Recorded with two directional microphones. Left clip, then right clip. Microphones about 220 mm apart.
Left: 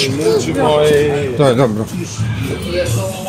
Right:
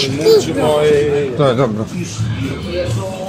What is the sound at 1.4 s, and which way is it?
Speech, 25° left (ahead or behind).